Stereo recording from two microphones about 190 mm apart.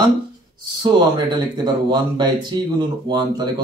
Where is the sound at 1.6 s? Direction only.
25° right (ahead or behind).